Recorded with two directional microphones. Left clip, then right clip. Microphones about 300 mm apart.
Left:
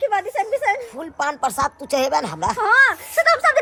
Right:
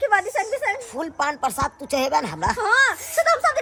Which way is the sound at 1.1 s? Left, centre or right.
Centre.